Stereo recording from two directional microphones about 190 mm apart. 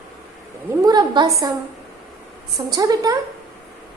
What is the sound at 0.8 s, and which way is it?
Speech, 20° right (ahead or behind).